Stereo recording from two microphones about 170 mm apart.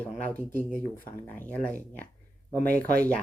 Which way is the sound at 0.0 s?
10° left (ahead or behind).